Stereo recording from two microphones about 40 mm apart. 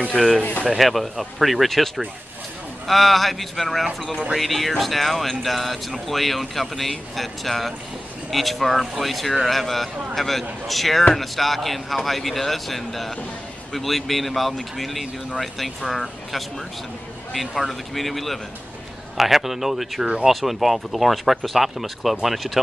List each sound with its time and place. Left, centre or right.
0.1 s speech: centre
0.4 s speech: left
0.7 s speech: centre
17.3 s speech: centre